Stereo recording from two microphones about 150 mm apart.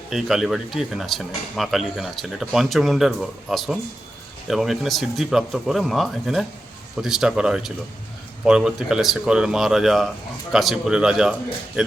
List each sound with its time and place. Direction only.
0.1 s speech: centre (ahead or behind)